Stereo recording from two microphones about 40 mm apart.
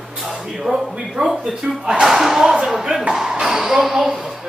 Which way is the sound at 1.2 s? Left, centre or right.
Right.